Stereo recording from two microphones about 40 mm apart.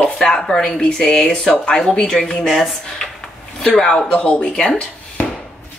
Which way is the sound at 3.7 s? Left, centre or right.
Centre.